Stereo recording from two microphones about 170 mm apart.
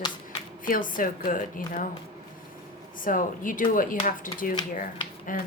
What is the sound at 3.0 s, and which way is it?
A woman's voice, 55° left (ahead or behind).